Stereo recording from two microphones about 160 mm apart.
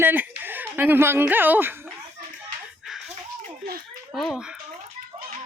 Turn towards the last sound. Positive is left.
turn(degrees=0)  # may be behind; listen again after turning